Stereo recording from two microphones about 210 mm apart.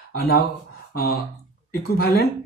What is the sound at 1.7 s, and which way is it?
Speech, 45° left (ahead or behind).